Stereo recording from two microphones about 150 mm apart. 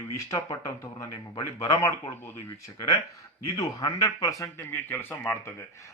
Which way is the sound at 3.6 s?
25° left (ahead or behind).